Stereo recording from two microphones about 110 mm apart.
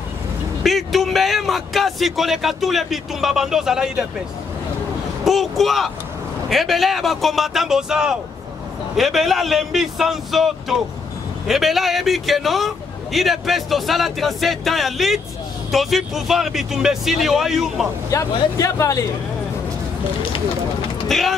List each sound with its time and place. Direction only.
0.7 s a man's voice: centre (ahead or behind)
5.2 s a man's voice: centre (ahead or behind)
18.1 s speech: 30° left (ahead or behind)
21.1 s a man's voice: centre (ahead or behind)